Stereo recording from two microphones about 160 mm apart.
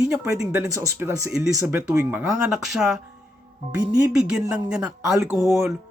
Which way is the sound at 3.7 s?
25° right (ahead or behind).